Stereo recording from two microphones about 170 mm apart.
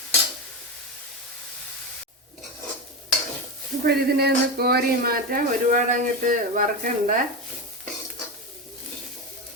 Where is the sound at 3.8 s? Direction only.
70° right (ahead or behind); by 6.9 s 50° right (ahead or behind).